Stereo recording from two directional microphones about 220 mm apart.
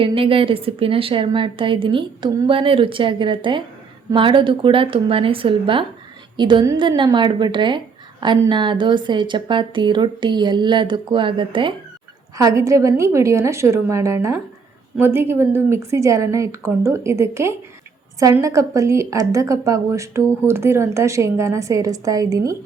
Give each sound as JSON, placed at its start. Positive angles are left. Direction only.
{"t": 0.0, "sound": "a woman's voice", "side_deg": -25}